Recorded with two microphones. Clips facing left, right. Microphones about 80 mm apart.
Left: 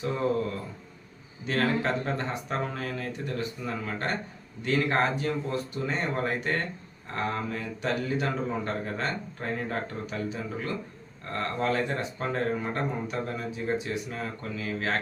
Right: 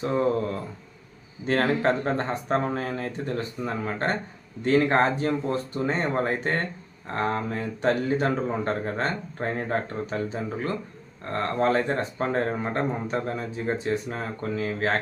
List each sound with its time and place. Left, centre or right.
1.5 s speech: right